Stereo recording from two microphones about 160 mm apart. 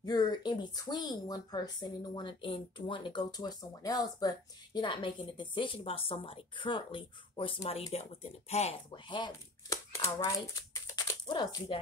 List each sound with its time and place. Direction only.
0.0 s speech: 25° left (ahead or behind); by 9.0 s 40° left (ahead or behind)
9.1 s speech: 25° left (ahead or behind)